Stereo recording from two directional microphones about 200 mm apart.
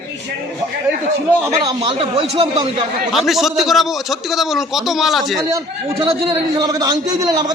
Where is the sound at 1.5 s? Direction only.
25° right (ahead or behind).